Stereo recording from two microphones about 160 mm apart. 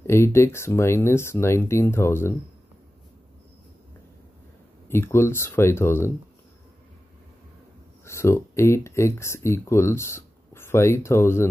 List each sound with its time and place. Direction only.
0.0 s speech: 15° left (ahead or behind)
4.8 s speech: 15° left (ahead or behind)
8.0 s speech: 15° left (ahead or behind)